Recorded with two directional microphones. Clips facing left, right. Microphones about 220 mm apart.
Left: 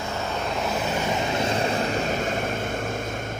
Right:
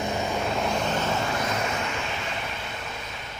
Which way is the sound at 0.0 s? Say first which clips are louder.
Right 2 dB; 15° right (ahead or behind).